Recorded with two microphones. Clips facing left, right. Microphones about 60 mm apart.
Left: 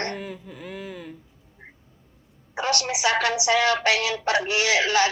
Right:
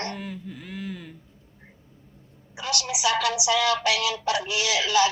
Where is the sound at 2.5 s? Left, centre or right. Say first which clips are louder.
Left 5 dB; left.